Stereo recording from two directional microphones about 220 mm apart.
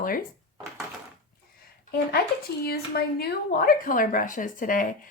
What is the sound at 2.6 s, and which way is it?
A woman's voice, 45° left (ahead or behind).